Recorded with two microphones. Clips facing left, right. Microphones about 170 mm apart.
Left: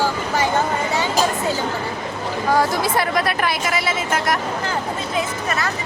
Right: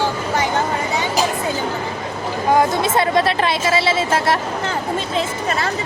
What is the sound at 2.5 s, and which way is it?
Speech, 25° right (ahead or behind).